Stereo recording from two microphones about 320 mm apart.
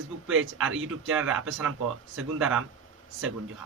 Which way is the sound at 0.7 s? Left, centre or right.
Right.